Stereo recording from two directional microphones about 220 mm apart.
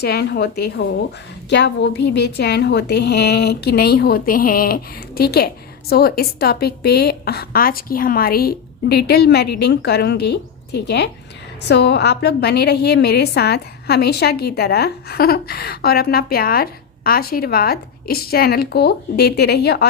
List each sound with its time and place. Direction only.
0.0 s a woman's voice: 45° left (ahead or behind)